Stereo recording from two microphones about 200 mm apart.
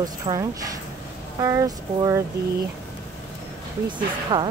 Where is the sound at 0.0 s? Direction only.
20° right (ahead or behind).